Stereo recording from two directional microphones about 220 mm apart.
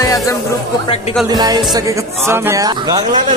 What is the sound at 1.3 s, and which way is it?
Speech, 20° right (ahead or behind).